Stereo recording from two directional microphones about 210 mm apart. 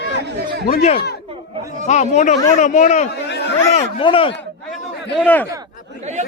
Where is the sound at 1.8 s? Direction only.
35° left (ahead or behind).